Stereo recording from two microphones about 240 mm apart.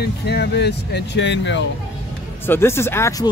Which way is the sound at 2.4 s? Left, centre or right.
Centre.